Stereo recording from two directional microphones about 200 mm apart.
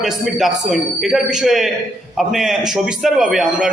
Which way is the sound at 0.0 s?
Centre (ahead or behind).